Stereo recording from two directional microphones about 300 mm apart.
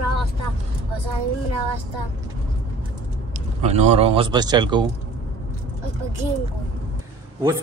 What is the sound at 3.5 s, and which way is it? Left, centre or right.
A man's voice, right.